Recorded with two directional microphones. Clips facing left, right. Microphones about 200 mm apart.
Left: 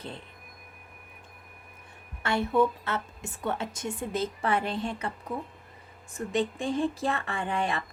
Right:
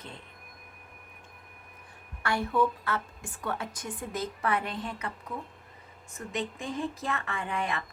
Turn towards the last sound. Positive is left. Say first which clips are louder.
# left 3 dB
turn(degrees=30)  # may be behind; listen again after turning